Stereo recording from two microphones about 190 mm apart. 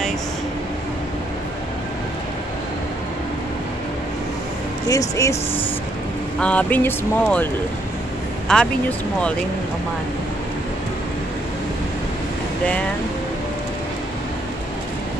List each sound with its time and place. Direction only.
4.8 s speech: 15° left (ahead or behind)
6.4 s speech: 10° left (ahead or behind)
8.5 s speech: 5° left (ahead or behind)